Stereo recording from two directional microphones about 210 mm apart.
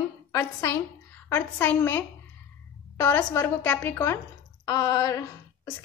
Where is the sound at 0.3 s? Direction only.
15° left (ahead or behind).